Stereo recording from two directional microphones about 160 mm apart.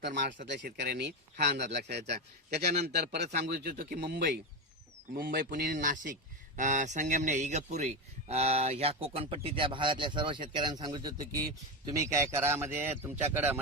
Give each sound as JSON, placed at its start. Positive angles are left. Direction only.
{"t": 0.0, "sound": "speech", "side_deg": -75}
{"t": 3.1, "sound": "speech", "side_deg": -90}
{"t": 5.1, "sound": "a man's voice", "side_deg": -65}